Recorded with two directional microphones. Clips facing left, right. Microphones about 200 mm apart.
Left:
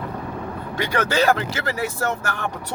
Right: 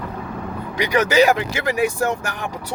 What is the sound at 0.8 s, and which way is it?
Speech, 15° right (ahead or behind).